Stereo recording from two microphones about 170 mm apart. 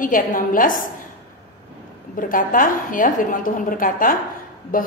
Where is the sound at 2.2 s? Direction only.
55° left (ahead or behind).